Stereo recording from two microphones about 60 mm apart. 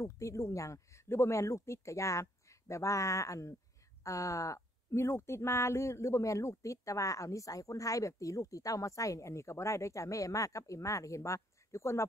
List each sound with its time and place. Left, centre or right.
0.0 s speech: left
1.0 s speech: left